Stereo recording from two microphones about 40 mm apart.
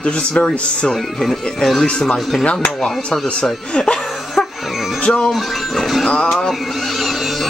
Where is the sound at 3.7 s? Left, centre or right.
Left.